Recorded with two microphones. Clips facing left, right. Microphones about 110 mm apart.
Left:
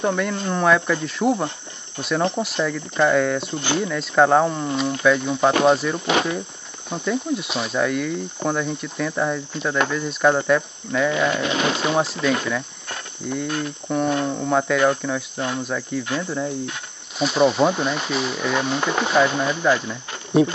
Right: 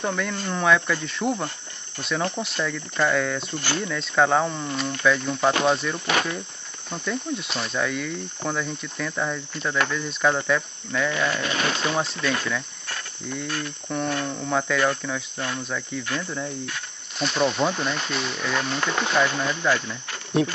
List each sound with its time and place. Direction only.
0.0 s speech: 5° left (ahead or behind)
2.0 s cricket: 5° left (ahead or behind)
2.4 s speech: 5° left (ahead or behind)
5.0 s cricket: 5° left (ahead or behind)
5.9 s cricket: 20° left (ahead or behind)
6.9 s cricket: 5° left (ahead or behind)
9.8 s speech: 5° left (ahead or behind); by 12.0 s 20° left (ahead or behind)
12.0 s cricket: 5° left (ahead or behind)
13.5 s cricket: 20° left (ahead or behind)
14.5 s speech: 5° left (ahead or behind)
15.6 s cricket: 5° left (ahead or behind)
16.1 s speech: 10° left (ahead or behind)
17.2 s cricket: 5° left (ahead or behind)